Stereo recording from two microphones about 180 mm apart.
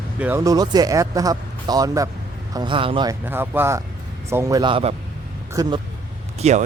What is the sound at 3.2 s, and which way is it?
Speech, 10° right (ahead or behind).